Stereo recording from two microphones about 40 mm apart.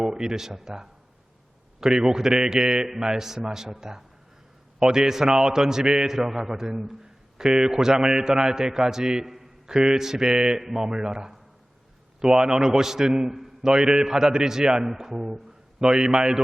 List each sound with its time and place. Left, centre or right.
0.0 s a man's voice: centre
9.2 s a sound: centre
9.9 s a man's voice: centre